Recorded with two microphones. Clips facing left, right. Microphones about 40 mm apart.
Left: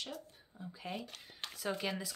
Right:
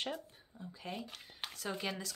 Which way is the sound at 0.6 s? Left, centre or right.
Centre.